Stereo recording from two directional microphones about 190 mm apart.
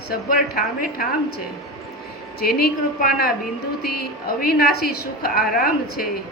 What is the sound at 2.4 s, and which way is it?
Speech, 55° left (ahead or behind).